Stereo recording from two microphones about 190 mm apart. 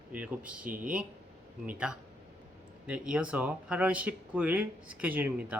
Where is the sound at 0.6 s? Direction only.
45° right (ahead or behind).